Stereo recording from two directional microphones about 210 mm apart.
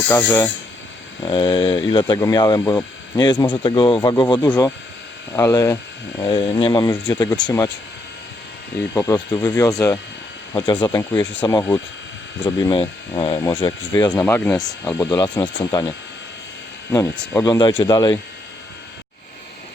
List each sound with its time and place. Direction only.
0.1 s speech: 10° left (ahead or behind)
1.2 s speech: 20° left (ahead or behind)
9.0 s speech: 15° left (ahead or behind)
16.9 s speech: 15° left (ahead or behind)